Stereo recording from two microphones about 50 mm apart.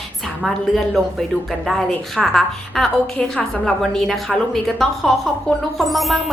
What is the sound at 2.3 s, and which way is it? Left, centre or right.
A woman's voice, centre.